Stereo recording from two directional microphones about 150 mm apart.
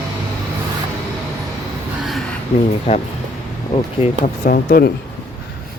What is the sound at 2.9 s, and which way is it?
Speech, 50° left (ahead or behind).